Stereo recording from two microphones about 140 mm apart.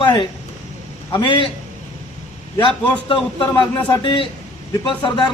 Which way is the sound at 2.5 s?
35° left (ahead or behind).